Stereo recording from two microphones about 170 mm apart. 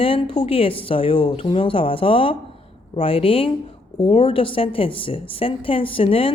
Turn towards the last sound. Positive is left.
turn(degrees=35)  # may be behind; listen again after turning